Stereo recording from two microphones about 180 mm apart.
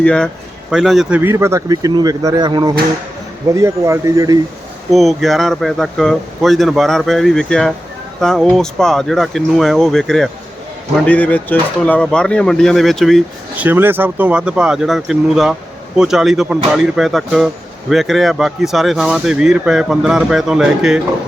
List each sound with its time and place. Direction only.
0.0 s speech: 5° left (ahead or behind)
1.2 s speech: 15° right (ahead or behind)
4.9 s speech: centre (ahead or behind)
13.7 s speech: 10° right (ahead or behind)